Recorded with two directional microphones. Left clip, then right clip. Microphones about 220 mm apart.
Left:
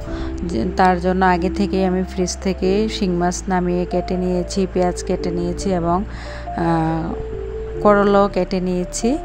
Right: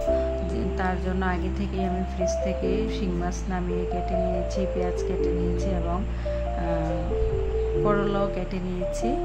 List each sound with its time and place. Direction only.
0.1 s speech: 35° left (ahead or behind)